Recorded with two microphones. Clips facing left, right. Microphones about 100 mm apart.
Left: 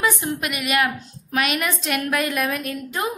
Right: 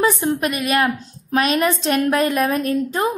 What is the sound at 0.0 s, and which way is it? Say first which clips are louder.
A woman's voice: right 5 dB; 30° right (ahead or behind).